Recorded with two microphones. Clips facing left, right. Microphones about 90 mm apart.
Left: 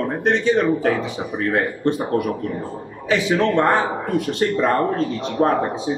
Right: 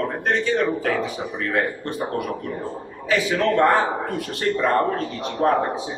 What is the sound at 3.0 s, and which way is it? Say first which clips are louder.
A man's voice: left 2 dB; 20° left (ahead or behind).